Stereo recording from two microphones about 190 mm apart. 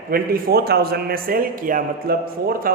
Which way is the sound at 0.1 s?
55° right (ahead or behind).